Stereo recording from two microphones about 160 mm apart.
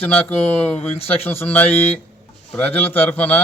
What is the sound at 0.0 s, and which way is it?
A man's voice, 10° left (ahead or behind).